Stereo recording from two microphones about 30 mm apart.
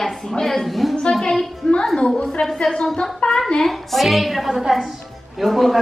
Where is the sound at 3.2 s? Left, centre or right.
Left.